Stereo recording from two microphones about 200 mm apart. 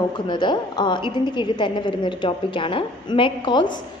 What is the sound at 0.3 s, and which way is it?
A woman's voice, 20° left (ahead or behind).